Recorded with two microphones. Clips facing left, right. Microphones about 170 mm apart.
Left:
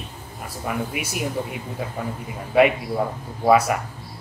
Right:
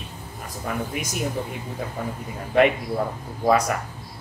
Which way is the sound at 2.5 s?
5° left (ahead or behind).